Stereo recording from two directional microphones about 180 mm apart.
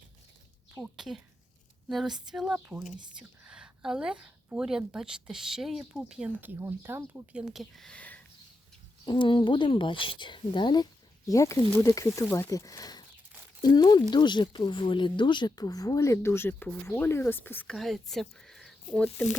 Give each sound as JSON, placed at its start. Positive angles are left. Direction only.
{"t": 0.8, "sound": "a woman's voice", "side_deg": 0}
{"t": 9.0, "sound": "speech", "side_deg": 25}